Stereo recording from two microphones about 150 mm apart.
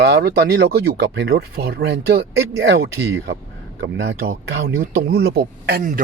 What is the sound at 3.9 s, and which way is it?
Speech, 80° right.